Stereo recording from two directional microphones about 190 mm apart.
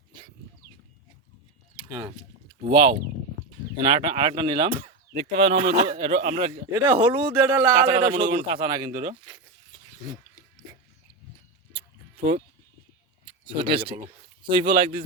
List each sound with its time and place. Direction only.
2.6 s speech: 30° right (ahead or behind)
5.1 s speech: 35° right (ahead or behind)
6.7 s speech: 20° right (ahead or behind)
13.2 s speech: 25° right (ahead or behind)